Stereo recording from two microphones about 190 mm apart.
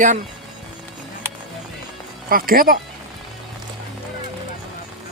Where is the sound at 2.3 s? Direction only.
50° right (ahead or behind).